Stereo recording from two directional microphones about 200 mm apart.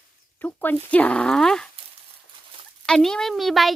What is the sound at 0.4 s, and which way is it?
Speech, 10° left (ahead or behind).